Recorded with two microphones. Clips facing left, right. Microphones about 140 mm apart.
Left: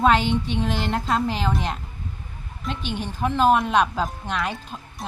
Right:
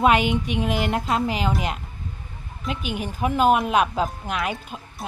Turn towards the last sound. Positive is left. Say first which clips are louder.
# right 1 dB
turn(degrees=-5)  # may be behind; listen again after turning